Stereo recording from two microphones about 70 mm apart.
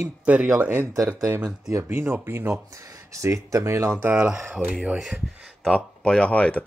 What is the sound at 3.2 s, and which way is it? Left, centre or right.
Speech, right.